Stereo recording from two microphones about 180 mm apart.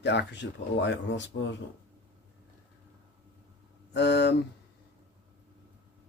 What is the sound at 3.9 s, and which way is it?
Speech, 70° left (ahead or behind).